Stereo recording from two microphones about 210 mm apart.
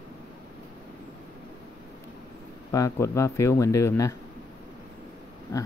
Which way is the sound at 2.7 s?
15° left (ahead or behind).